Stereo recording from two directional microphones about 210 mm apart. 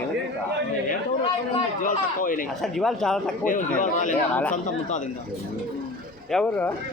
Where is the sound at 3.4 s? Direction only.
40° left (ahead or behind).